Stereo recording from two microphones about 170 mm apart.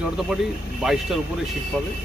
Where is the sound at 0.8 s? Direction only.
Centre (ahead or behind).